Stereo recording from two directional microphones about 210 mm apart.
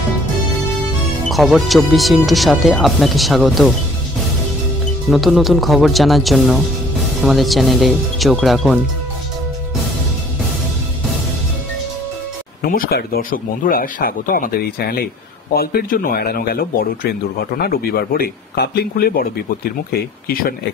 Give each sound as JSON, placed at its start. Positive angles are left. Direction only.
{"t": 1.3, "sound": "speech", "side_deg": 0}
{"t": 5.1, "sound": "speech", "side_deg": 0}
{"t": 12.6, "sound": "a man's voice", "side_deg": 45}